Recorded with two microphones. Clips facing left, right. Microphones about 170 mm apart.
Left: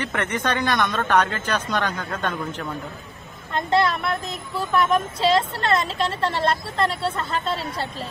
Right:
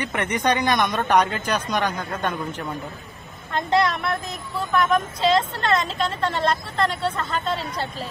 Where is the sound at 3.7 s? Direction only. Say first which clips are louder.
Even; centre (ahead or behind).